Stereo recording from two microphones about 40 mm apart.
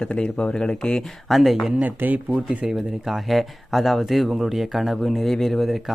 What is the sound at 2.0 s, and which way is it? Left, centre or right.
Speech, right.